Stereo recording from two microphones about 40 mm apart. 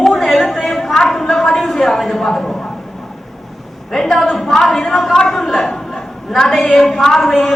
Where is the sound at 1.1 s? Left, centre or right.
Centre.